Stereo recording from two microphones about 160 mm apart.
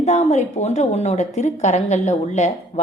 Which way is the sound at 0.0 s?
45° left (ahead or behind).